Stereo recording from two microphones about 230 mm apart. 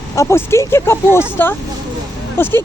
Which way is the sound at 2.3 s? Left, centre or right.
Centre.